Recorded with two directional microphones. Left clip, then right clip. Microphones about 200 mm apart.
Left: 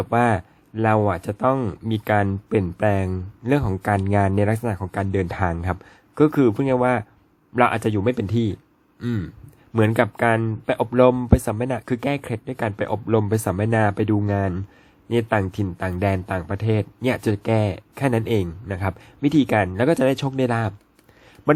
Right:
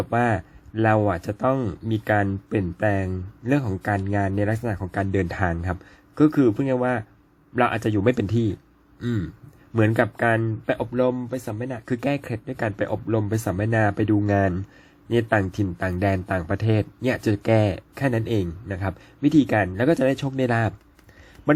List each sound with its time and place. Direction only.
0.0 s speech: 15° left (ahead or behind)
8.0 s speech: centre (ahead or behind)
10.9 s speech: 25° left (ahead or behind)
11.9 s a man's voice: 10° left (ahead or behind)